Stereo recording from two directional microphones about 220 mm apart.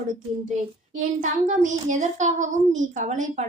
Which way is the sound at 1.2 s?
35° right (ahead or behind).